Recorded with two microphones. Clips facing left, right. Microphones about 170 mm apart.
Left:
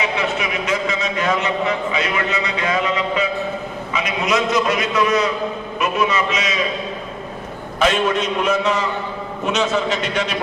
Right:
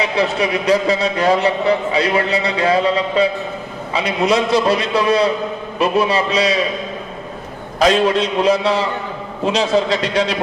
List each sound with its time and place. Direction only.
0.0 s a man's voice: 35° right (ahead or behind)
7.8 s a man's voice: 35° right (ahead or behind)